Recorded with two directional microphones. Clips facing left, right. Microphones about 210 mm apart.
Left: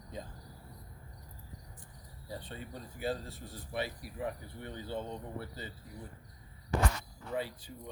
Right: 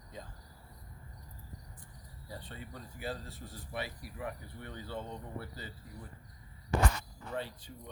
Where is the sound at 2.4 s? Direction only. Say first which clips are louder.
Left 2 dB; 25° left (ahead or behind).